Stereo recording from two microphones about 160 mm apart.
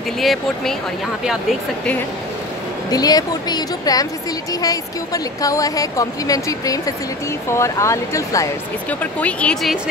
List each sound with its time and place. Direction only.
0.2 s speech: centre (ahead or behind)
2.9 s speech: 25° left (ahead or behind)
9.0 s speech: 10° left (ahead or behind)